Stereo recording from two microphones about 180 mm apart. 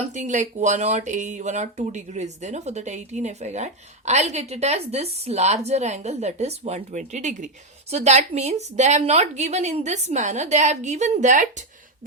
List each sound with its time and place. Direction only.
0.0 s speech: 40° right (ahead or behind)